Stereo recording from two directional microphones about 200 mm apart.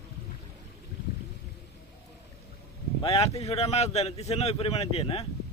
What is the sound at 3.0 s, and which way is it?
A man's voice, 25° left (ahead or behind).